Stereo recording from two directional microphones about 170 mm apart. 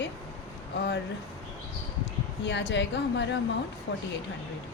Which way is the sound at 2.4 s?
90° left.